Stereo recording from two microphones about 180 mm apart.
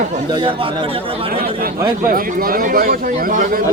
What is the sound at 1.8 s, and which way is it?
Speech, 50° right (ahead or behind).